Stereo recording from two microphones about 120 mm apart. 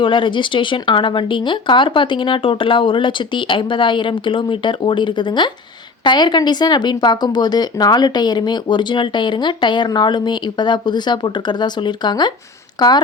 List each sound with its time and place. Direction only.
0.0 s speech: 45° left (ahead or behind)